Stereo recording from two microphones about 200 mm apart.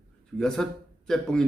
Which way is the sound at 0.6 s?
5° left (ahead or behind).